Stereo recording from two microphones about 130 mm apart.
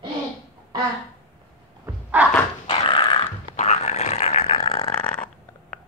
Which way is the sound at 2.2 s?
10° right (ahead or behind).